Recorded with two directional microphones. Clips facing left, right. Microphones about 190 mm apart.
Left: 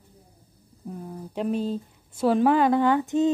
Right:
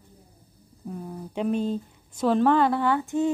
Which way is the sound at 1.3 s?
Centre (ahead or behind).